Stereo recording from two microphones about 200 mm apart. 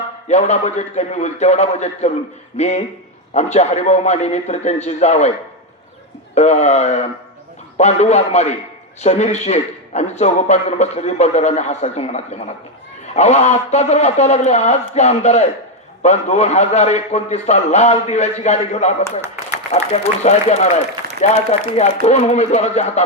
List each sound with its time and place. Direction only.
0.3 s a man's voice: 35° left (ahead or behind)
6.3 s a man's voice: 35° left (ahead or behind)